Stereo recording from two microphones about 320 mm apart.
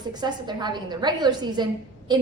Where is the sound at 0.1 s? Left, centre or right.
Centre.